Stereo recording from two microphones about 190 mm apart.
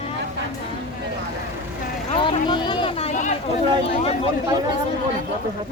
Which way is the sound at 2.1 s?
25° left (ahead or behind).